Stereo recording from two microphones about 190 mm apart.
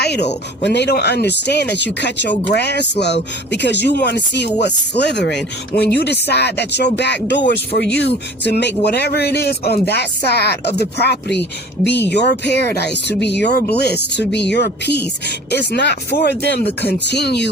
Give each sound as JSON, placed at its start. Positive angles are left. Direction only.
{"t": 0.0, "sound": "speech", "side_deg": 60}